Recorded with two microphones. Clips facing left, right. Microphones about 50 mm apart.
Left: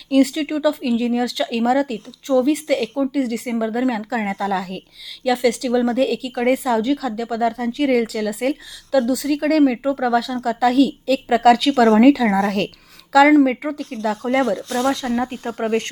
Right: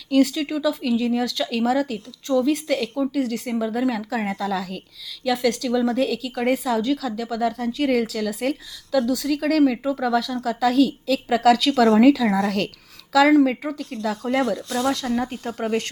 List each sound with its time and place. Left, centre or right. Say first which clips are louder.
0.1 s speech: left 2 dB; centre
3.5 s speech: left 2 dB; left
10.4 s speech: left 3 dB; centre
11.3 s speech: left 3 dB; centre
14.4 s speech: left 3 dB; left
15.0 s speech: left 2 dB; left